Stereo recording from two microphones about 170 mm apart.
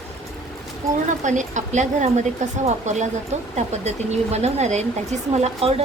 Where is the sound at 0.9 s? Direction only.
45° right (ahead or behind).